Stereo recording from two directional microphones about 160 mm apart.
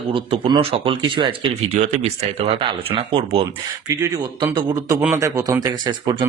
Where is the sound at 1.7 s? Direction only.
50° right (ahead or behind).